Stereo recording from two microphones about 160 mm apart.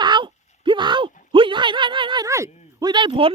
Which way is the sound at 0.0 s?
30° right (ahead or behind).